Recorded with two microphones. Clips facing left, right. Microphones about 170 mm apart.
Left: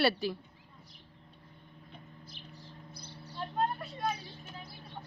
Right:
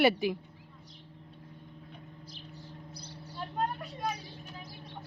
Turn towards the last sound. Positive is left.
turn(degrees=-10)  # may be behind; listen again after turning